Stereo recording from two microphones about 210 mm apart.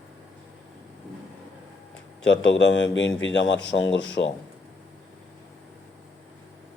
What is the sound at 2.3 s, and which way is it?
Speech, 60° left (ahead or behind).